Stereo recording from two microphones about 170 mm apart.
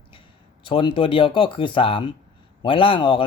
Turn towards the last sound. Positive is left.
turn(degrees=30)  # may be behind; listen again after turning